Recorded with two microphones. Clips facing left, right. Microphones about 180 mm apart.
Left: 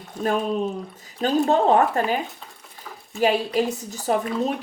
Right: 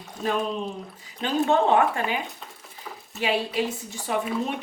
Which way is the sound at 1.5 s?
40° left (ahead or behind).